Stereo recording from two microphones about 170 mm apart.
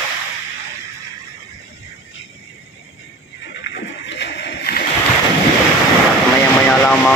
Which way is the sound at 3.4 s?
90° left.